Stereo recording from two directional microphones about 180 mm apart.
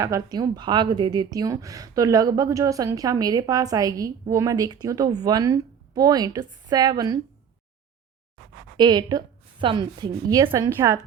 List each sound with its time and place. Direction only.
0.0 s a woman's voice: 20° right (ahead or behind)
8.8 s a woman's voice: 25° right (ahead or behind)